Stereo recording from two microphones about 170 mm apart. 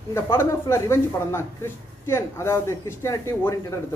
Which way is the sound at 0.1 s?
15° left (ahead or behind).